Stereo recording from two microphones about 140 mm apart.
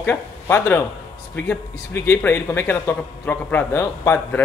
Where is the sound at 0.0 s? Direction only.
15° left (ahead or behind).